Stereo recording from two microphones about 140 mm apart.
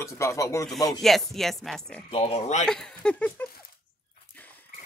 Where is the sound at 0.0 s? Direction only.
20° left (ahead or behind).